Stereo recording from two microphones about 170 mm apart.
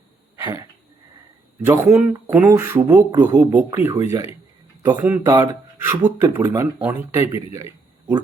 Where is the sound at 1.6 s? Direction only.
15° right (ahead or behind).